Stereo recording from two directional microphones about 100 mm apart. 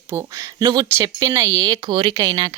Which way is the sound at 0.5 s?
40° right (ahead or behind).